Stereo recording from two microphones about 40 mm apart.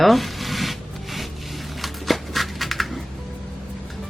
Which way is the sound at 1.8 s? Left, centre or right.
Centre.